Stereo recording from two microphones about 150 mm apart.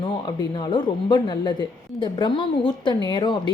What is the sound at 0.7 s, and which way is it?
A woman's voice, 30° left (ahead or behind).